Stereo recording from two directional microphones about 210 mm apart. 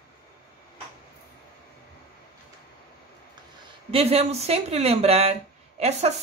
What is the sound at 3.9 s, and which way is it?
Speech, 30° right (ahead or behind).